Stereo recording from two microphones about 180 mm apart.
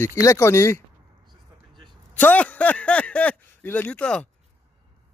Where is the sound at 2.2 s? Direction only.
10° left (ahead or behind).